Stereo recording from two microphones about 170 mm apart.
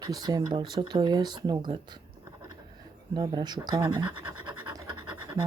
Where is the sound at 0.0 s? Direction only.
25° right (ahead or behind).